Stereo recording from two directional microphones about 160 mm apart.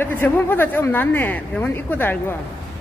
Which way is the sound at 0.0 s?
10° left (ahead or behind).